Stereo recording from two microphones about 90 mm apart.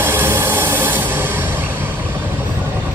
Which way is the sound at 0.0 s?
25° right (ahead or behind).